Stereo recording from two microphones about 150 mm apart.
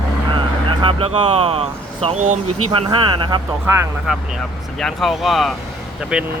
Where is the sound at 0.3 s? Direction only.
30° right (ahead or behind).